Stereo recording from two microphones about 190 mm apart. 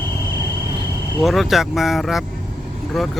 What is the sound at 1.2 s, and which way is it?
Speech, centre (ahead or behind).